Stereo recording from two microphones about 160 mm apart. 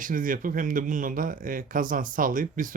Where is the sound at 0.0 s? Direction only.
60° right (ahead or behind).